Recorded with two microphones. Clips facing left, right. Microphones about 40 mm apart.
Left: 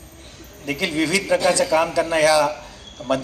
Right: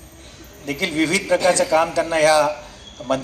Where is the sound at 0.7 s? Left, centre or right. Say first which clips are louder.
Right 1 dB; right.